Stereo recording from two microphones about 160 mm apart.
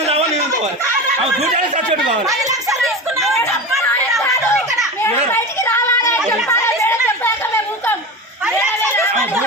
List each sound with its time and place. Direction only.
0.0 s a sound: 45° right (ahead or behind)
1.2 s speech: 45° right (ahead or behind)
2.2 s speech: 20° right (ahead or behind)
3.2 s chatter: centre (ahead or behind)
5.3 s child singing: 15° left (ahead or behind)
6.5 s chatter: 15° left (ahead or behind)